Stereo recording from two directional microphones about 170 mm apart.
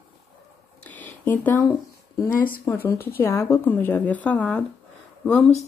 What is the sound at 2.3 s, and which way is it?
Speech, 55° left (ahead or behind).